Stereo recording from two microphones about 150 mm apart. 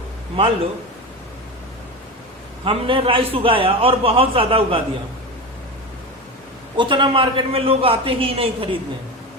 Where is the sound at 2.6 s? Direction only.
35° right (ahead or behind).